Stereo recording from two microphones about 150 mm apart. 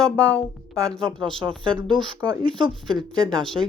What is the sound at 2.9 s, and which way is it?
Speech, 5° left (ahead or behind).